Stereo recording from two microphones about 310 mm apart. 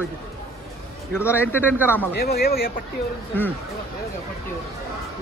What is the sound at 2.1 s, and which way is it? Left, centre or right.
Speech, left.